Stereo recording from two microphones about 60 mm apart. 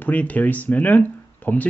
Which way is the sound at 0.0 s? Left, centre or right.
Left.